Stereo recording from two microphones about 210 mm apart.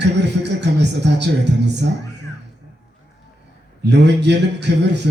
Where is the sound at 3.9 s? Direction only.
55° right (ahead or behind).